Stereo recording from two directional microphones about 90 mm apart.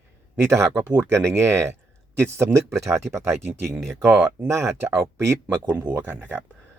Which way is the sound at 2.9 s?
30° right (ahead or behind).